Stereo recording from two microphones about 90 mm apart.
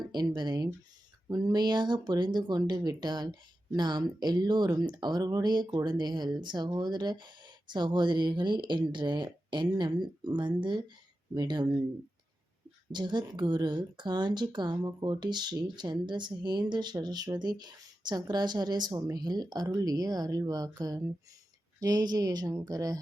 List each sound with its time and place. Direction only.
0.1 s speech: 55° right (ahead or behind)
12.9 s speech: 55° right (ahead or behind)